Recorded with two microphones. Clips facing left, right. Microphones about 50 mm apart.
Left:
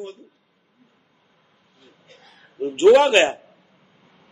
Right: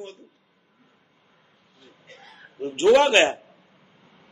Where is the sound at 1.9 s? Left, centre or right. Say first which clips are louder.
Right 3 dB; right.